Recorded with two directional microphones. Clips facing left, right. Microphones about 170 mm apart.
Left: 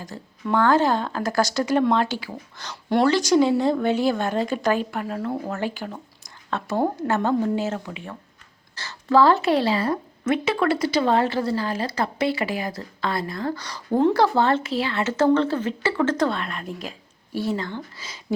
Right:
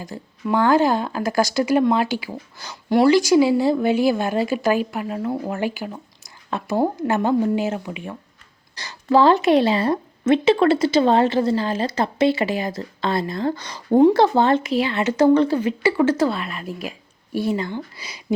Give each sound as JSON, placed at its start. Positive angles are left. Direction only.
{"t": 0.0, "sound": "a woman's voice", "side_deg": -10}